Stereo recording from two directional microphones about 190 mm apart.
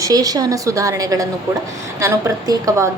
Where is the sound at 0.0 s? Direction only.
20° right (ahead or behind).